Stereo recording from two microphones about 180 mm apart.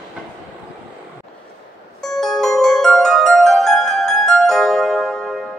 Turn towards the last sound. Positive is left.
turn(degrees=0)  # may be behind; listen again after turning